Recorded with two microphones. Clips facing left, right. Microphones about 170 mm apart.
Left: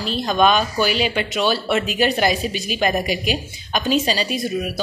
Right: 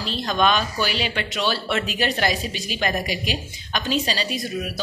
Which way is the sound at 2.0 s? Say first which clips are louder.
Left 4 dB; 10° left (ahead or behind).